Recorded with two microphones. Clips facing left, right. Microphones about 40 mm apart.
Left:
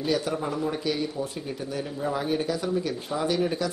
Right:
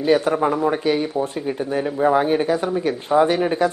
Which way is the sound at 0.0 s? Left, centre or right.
Right.